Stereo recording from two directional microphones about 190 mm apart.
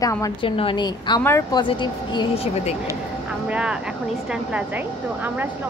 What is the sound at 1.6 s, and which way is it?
A woman's voice, 25° left (ahead or behind).